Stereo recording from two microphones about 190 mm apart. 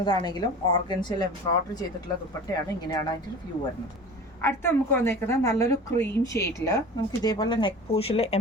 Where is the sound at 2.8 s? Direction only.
20° left (ahead or behind).